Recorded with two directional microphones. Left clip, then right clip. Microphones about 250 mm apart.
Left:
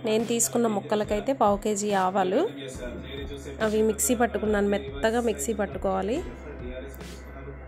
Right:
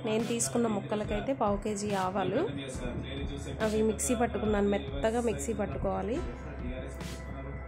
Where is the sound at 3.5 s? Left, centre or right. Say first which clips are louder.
Left 5 dB; centre.